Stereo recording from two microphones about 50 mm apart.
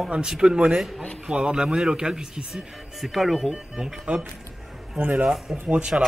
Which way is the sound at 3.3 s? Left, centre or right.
Centre.